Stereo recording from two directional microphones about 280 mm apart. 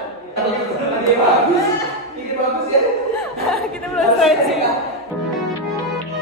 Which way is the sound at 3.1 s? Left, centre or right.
Centre.